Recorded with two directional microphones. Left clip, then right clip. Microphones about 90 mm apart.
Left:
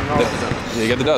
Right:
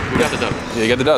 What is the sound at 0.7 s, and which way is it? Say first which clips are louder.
Speech: right 3 dB; 10° right (ahead or behind).